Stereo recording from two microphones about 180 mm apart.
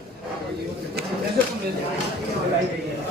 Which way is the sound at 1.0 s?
60° right (ahead or behind).